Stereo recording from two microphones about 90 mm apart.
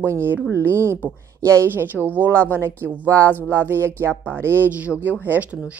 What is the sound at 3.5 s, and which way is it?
Speech, 25° right (ahead or behind).